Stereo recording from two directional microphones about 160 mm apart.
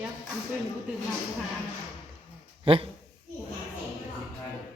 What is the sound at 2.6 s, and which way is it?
Speech, 35° right (ahead or behind).